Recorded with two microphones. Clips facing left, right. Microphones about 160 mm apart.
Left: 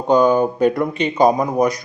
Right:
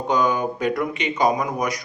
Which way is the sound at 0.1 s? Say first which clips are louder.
Left 8 dB; 30° left (ahead or behind).